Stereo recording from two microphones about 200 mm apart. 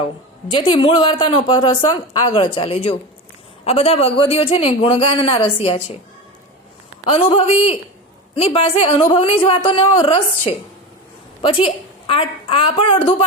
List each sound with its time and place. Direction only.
0.5 s speech: 25° left (ahead or behind)
7.0 s speech: 30° left (ahead or behind)